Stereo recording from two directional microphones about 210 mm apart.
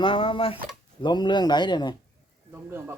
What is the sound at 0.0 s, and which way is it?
Speech, 25° left (ahead or behind).